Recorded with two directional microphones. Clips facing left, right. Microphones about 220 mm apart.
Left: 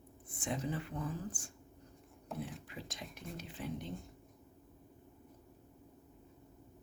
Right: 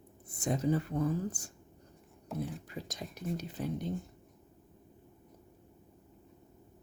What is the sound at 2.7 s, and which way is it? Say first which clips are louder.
Whispering: right 5 dB; 40° right (ahead or behind).